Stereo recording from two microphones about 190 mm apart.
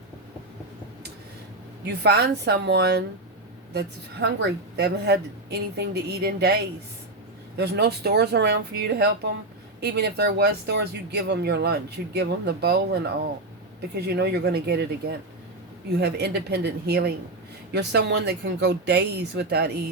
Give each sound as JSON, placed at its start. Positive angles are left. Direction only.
{"t": 1.9, "sound": "speech", "side_deg": -60}
{"t": 16.0, "sound": "speech", "side_deg": -60}